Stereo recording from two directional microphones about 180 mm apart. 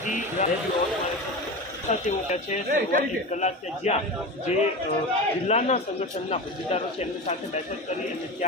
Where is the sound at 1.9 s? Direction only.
40° left (ahead or behind).